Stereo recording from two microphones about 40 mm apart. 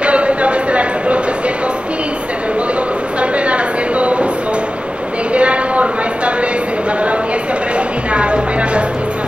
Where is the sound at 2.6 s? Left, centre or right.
Right.